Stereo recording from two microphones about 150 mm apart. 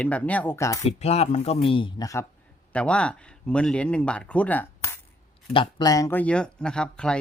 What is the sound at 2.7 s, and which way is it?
Speech, 5° left (ahead or behind).